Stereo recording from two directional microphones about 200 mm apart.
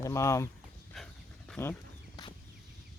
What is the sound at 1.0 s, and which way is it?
Dog, centre (ahead or behind).